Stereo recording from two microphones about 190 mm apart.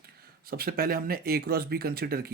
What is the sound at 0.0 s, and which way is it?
Speech, 55° right (ahead or behind).